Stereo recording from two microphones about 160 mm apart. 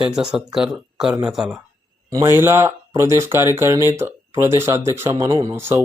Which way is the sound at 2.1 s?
20° right (ahead or behind).